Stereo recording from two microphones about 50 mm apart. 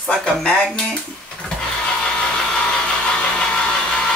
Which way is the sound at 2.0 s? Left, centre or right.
Centre.